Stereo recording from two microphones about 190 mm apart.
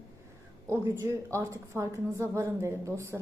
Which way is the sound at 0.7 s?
15° right (ahead or behind).